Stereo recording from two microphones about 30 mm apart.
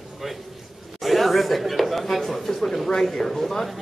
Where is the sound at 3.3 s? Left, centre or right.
Centre.